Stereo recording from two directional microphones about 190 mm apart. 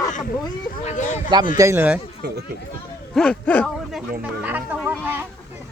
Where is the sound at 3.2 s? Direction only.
5° left (ahead or behind).